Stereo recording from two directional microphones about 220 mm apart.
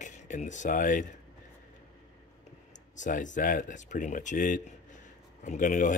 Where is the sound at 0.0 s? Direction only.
35° left (ahead or behind).